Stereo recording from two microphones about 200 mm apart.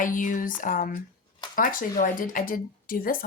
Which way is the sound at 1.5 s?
45° left (ahead or behind).